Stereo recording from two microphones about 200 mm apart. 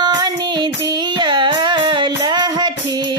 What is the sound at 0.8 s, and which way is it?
Music, 20° right (ahead or behind).